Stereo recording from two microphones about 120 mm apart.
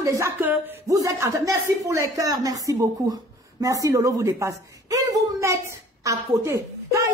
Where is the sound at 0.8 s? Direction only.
30° right (ahead or behind).